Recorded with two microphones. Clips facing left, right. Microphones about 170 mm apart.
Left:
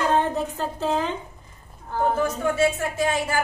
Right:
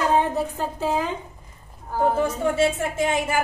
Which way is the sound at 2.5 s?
25° right (ahead or behind).